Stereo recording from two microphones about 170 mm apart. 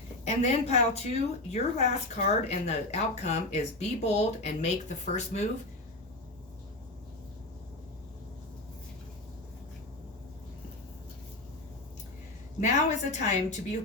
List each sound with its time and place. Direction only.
0.3 s speech: 40° left (ahead or behind)
12.5 s a woman's voice: 45° left (ahead or behind)